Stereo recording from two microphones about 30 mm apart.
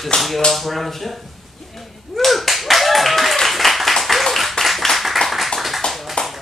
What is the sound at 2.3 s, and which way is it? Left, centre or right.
Clapping, centre.